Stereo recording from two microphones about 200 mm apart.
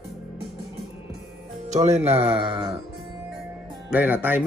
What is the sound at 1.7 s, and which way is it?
Speech, 35° right (ahead or behind).